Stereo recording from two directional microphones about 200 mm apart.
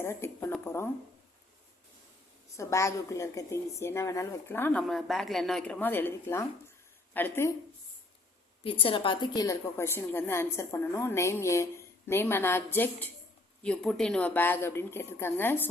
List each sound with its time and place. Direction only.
0.0 s speech: 10° left (ahead or behind)
2.6 s a woman's voice: 15° left (ahead or behind)
8.6 s a woman's voice: 25° left (ahead or behind); by 15.6 s 10° left (ahead or behind)